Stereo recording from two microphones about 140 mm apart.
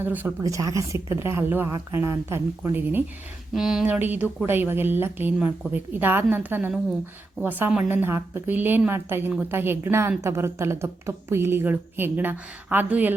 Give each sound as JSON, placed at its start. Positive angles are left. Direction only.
{"t": 0.0, "sound": "a woman's voice", "side_deg": -15}
{"t": 0.4, "sound": "a woman's voice", "side_deg": -25}
{"t": 3.5, "sound": "a woman's voice", "side_deg": -5}